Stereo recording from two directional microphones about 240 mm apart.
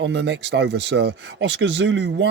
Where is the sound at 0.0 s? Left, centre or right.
Right.